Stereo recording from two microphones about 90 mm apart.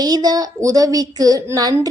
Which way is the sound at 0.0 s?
50° right (ahead or behind).